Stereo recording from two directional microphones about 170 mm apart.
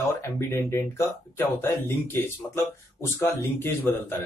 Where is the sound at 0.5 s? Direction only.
15° left (ahead or behind).